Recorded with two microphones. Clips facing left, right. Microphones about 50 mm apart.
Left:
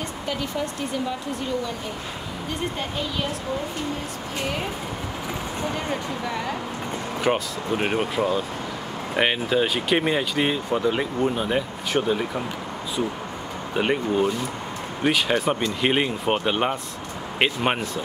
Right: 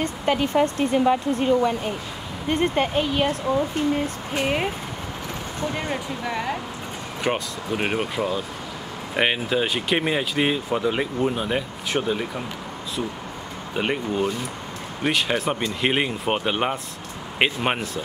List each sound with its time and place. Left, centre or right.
0.0 s speech: right
6.2 s speech: centre
9.1 s speech: centre
13.7 s speech: centre